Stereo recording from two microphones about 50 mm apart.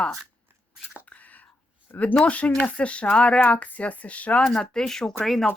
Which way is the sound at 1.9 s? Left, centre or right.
Left.